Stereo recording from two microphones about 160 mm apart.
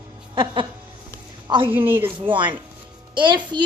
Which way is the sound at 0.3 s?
30° right (ahead or behind).